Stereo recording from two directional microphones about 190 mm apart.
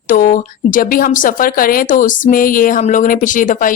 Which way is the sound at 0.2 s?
45° left (ahead or behind).